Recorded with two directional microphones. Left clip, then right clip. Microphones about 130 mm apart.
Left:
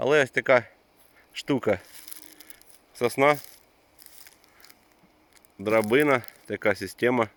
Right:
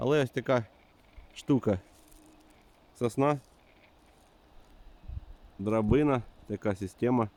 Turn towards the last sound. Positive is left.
turn(degrees=0)  # may be behind; listen again after turning